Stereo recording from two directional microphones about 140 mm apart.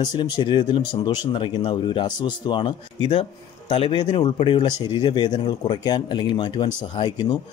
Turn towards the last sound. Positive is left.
turn(degrees=35)  # may be behind; listen again after turning